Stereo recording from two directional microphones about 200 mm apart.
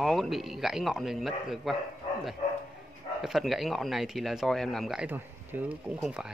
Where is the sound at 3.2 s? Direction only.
Centre (ahead or behind).